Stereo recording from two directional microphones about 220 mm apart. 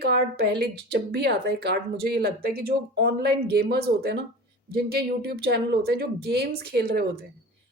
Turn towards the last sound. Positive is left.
turn(degrees=-45)  # may be behind; listen again after turning